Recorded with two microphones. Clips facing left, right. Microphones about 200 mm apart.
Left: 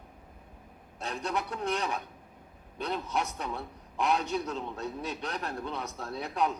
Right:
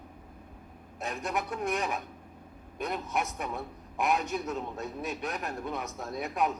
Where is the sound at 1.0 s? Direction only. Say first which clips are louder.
Even; 15° right (ahead or behind).